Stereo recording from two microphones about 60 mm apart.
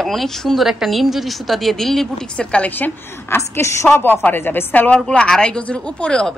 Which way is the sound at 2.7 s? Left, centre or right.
Left.